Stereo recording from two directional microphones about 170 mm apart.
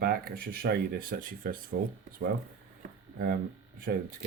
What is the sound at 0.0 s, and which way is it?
Speech, 60° right (ahead or behind).